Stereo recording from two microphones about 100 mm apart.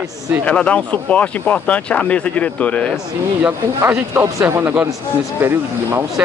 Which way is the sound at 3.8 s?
25° right (ahead or behind).